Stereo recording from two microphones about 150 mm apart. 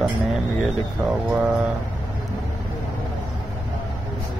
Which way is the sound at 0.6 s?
10° right (ahead or behind).